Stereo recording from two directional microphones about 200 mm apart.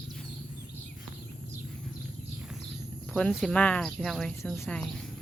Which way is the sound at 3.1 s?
Centre (ahead or behind).